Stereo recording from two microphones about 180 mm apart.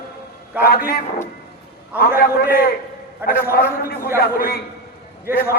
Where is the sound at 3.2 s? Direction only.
10° right (ahead or behind).